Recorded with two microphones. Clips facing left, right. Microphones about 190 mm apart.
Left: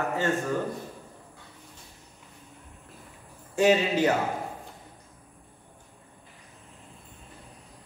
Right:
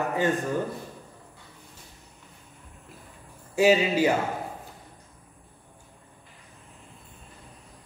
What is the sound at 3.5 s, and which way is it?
Speech, 10° right (ahead or behind).